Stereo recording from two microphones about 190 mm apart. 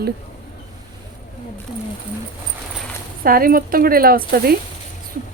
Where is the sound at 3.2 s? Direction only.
50° right (ahead or behind).